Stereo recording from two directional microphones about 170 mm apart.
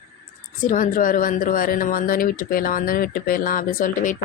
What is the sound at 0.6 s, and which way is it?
Speech, 50° left (ahead or behind).